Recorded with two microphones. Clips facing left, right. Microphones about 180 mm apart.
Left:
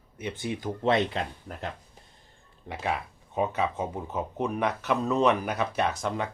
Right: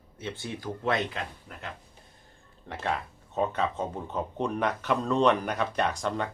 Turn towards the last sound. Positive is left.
turn(degrees=0)  # may be behind; listen again after turning